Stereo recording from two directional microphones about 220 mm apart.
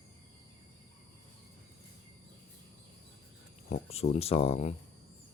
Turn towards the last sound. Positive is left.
turn(degrees=30)  # may be behind; listen again after turning